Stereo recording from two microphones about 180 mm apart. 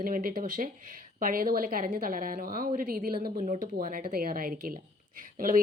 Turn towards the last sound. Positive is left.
turn(degrees=-50)  # may be behind; listen again after turning